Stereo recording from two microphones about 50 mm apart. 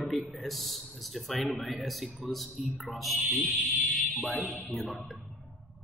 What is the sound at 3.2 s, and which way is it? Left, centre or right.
Speech, right.